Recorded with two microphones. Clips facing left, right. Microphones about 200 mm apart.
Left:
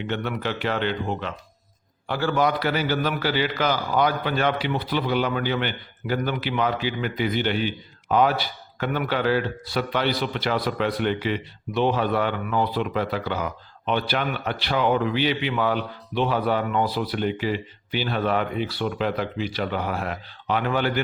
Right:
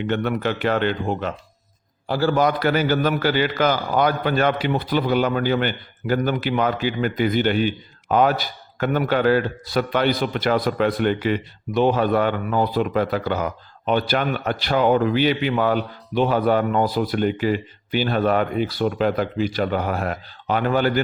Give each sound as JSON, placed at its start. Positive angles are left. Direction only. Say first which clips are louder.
{"t": 0.1, "sound": "a man's voice", "louder": "right 5 dB", "side_deg": -50}
{"t": 2.0, "sound": "a man's voice", "louder": "right 3 dB", "side_deg": -35}